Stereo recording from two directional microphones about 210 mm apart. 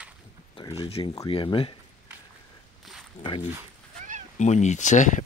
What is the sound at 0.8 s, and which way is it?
Speech, 25° left (ahead or behind).